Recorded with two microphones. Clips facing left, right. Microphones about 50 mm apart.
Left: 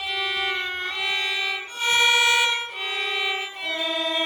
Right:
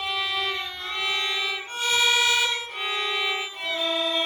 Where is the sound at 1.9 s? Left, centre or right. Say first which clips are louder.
Left 3 dB; left.